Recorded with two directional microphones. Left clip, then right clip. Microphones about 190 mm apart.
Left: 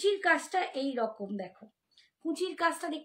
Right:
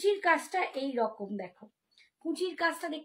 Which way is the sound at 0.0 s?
25° left (ahead or behind).